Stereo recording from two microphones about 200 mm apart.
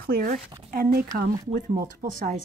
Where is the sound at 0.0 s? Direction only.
45° right (ahead or behind).